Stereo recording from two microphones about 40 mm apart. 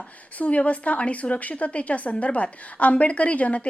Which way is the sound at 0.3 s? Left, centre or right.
Left.